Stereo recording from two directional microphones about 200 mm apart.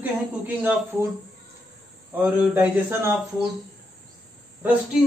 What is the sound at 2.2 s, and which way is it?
Speech, 10° right (ahead or behind).